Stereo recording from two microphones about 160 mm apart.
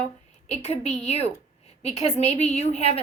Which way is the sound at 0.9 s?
40° left (ahead or behind).